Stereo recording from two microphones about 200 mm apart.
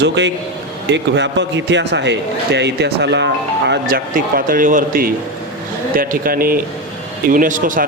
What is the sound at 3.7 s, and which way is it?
A man's voice, 45° right (ahead or behind).